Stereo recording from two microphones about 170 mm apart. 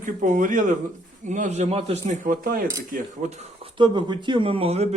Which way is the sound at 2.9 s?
45° right (ahead or behind).